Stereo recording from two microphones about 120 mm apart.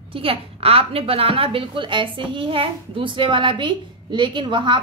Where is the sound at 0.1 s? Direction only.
50° right (ahead or behind).